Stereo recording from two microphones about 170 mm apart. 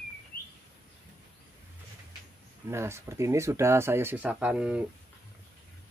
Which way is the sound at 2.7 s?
15° right (ahead or behind).